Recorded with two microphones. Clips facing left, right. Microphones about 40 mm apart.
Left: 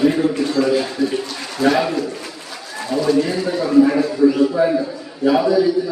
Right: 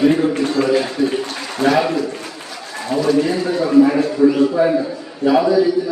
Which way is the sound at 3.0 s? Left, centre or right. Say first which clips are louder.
Right 1 dB; centre.